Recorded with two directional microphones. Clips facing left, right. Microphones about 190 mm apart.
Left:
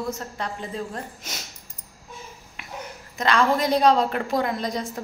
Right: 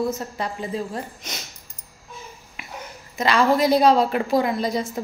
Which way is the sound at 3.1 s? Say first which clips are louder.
Right 2 dB; 5° right (ahead or behind).